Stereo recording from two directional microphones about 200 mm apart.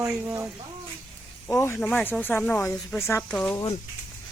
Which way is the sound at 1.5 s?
15° left (ahead or behind).